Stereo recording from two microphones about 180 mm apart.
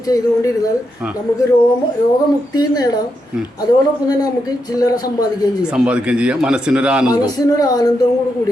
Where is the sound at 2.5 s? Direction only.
20° left (ahead or behind).